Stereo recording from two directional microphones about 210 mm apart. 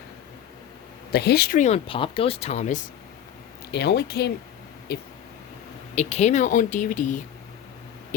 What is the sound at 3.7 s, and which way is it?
Speech, 50° left (ahead or behind).